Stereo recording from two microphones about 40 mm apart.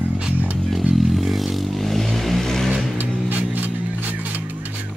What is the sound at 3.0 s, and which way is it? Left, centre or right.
Music, right.